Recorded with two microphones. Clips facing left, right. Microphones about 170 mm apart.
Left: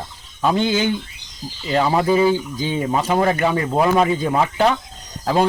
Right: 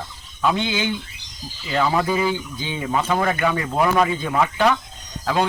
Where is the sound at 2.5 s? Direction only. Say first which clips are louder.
Left 3 dB; 40° left (ahead or behind).